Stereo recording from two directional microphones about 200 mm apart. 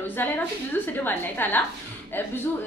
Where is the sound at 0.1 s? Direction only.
10° left (ahead or behind).